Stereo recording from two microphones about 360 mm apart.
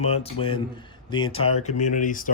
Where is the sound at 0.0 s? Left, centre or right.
Centre.